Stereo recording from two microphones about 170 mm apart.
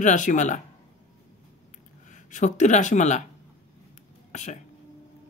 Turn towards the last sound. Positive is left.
turn(degrees=45)  # may be behind; listen again after turning